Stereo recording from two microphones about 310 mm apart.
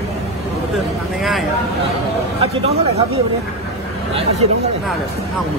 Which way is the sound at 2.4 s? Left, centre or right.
Centre.